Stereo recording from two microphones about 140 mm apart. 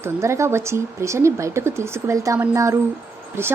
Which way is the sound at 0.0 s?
20° right (ahead or behind).